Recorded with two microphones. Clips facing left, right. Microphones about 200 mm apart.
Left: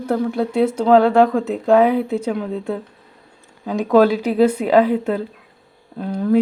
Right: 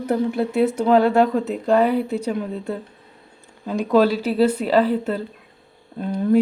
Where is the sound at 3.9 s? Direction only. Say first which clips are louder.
Left 3 dB; 50° left (ahead or behind).